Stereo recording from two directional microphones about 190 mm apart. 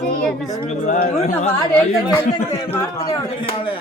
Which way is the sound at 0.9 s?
45° left (ahead or behind).